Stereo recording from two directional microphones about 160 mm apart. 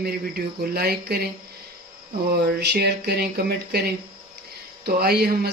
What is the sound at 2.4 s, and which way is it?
Speech, 90° right.